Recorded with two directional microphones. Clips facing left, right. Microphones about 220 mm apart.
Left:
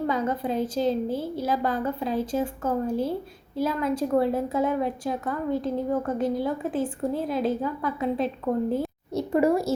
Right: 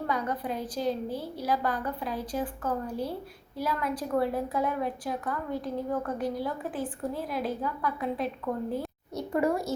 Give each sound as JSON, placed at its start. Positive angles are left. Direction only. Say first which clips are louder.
{"t": 0.1, "sound": "a woman's voice", "louder": "left 5 dB", "side_deg": 25}